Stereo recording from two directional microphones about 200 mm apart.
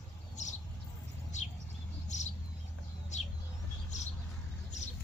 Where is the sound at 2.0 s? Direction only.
35° left (ahead or behind).